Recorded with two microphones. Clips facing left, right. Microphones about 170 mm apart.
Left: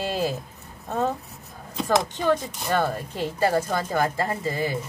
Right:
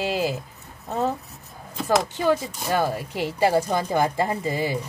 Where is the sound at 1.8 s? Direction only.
5° right (ahead or behind).